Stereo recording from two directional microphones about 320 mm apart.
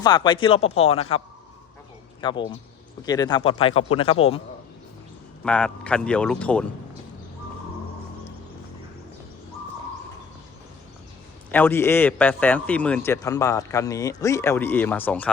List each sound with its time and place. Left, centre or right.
0.0 s a man's voice: centre
2.2 s a man's voice: centre
5.4 s speech: centre
11.5 s a man's voice: centre